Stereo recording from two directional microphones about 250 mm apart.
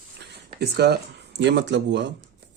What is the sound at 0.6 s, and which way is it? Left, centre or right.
Speech, right.